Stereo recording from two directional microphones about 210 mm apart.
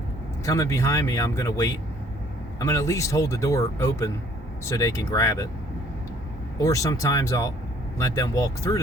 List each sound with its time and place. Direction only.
0.4 s speech: 15° left (ahead or behind)
6.6 s speech: 15° left (ahead or behind)